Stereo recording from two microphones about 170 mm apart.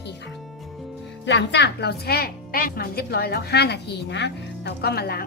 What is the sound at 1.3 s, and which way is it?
A woman's voice, 90° left.